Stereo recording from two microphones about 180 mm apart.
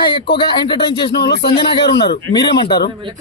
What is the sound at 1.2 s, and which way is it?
Speech, 70° left (ahead or behind).